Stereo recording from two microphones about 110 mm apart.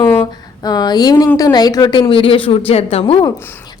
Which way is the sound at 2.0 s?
55° left (ahead or behind).